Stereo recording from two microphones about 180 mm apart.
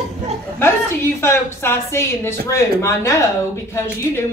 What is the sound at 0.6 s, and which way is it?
Speech, 15° left (ahead or behind).